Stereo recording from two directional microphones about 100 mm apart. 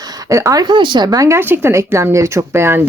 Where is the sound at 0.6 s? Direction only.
50° right (ahead or behind).